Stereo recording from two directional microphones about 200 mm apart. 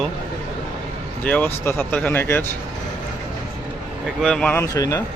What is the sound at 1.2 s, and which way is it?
Speech, 10° left (ahead or behind).